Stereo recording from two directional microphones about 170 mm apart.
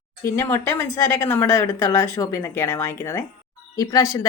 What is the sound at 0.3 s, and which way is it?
Speech, 15° left (ahead or behind).